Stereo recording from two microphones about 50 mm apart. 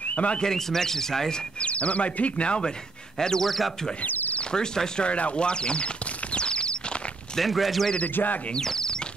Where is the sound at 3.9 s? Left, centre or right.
Left.